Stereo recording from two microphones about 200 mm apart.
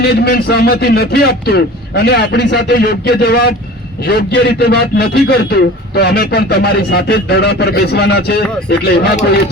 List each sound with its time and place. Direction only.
0.0 s a man's voice: 50° left (ahead or behind)